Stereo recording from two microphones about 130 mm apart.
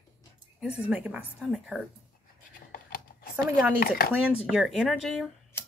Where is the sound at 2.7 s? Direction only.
90° left.